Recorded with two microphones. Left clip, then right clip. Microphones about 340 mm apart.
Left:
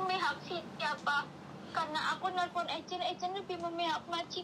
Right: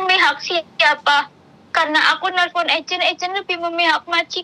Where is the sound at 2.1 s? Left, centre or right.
Right.